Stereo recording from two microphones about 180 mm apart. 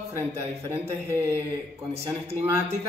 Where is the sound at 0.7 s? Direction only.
15° right (ahead or behind).